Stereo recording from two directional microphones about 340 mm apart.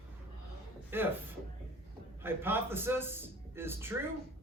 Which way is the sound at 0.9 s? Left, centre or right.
Centre.